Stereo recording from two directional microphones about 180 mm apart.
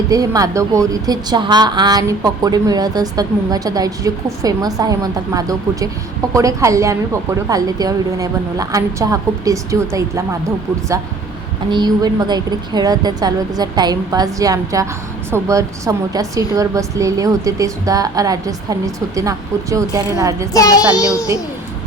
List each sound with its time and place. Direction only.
0.1 s a woman's voice: 20° right (ahead or behind)
11.7 s a woman's voice: 25° right (ahead or behind)
20.5 s a child's voice: 20° left (ahead or behind)